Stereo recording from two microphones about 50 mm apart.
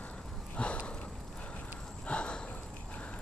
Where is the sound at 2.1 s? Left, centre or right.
Left.